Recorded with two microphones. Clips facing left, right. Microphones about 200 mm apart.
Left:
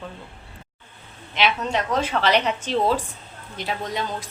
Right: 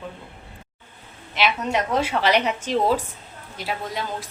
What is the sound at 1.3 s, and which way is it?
A woman's voice, 10° right (ahead or behind).